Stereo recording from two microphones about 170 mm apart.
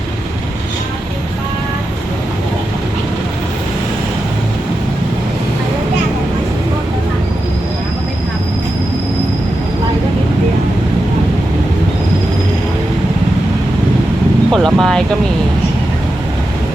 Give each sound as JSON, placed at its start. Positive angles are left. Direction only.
{"t": 14.5, "sound": "vehicle", "side_deg": 0}